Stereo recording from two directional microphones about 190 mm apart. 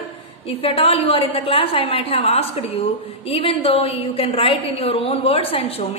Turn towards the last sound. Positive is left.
turn(degrees=30)  # may be behind; listen again after turning